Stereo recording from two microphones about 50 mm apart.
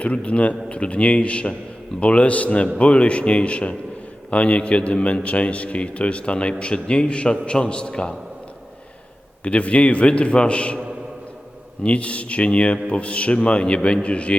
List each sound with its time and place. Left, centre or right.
0.0 s a man's voice: left
9.4 s a man's voice: left
11.8 s a man's voice: left